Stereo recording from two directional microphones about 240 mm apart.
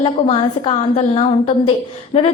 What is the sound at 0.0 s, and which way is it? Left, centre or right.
A woman's voice, left.